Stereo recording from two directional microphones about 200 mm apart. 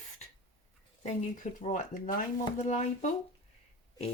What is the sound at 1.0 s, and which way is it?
Speech, 40° left (ahead or behind).